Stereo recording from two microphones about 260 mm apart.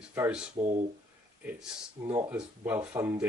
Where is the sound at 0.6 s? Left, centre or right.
Right.